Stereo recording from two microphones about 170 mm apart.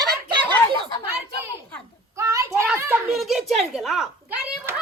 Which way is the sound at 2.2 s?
20° right (ahead or behind).